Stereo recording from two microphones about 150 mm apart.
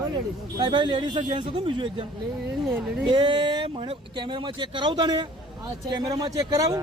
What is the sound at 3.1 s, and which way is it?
A man's voice, 30° right (ahead or behind).